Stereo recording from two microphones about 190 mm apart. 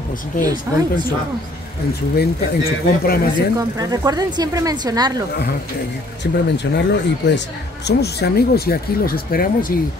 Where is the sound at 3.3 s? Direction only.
20° right (ahead or behind).